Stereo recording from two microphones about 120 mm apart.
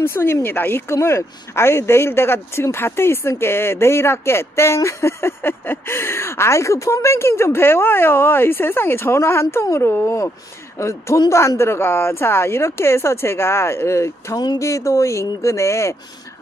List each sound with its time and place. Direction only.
0.0 s speech: 20° left (ahead or behind)